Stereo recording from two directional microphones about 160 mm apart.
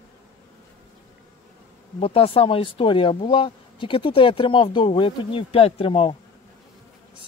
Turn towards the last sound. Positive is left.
turn(degrees=35)  # may be behind; listen again after turning